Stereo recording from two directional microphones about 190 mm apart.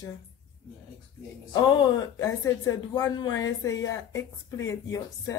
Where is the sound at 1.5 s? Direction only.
25° left (ahead or behind).